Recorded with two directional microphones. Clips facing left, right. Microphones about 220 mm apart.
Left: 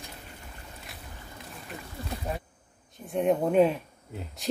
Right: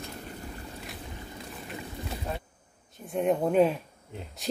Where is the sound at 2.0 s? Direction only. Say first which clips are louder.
Left 3 dB; 15° right (ahead or behind).